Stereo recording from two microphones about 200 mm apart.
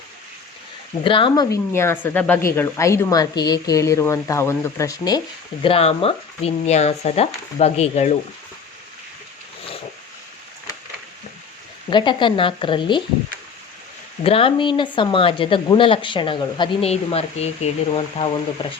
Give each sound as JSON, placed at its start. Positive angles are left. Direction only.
{"t": 1.0, "sound": "speech", "side_deg": 25}
{"t": 11.9, "sound": "speech", "side_deg": 25}
{"t": 14.3, "sound": "speech", "side_deg": 25}